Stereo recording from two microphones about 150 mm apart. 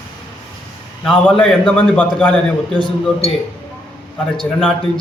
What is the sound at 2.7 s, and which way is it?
Speech, 30° left (ahead or behind).